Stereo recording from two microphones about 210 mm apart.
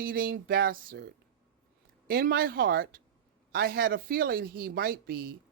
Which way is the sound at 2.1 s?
45° right (ahead or behind).